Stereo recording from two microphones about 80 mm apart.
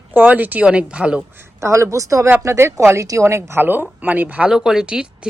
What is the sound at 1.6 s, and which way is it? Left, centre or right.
A woman's voice, right.